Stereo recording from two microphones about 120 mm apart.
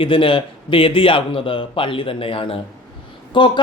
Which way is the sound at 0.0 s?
45° left (ahead or behind).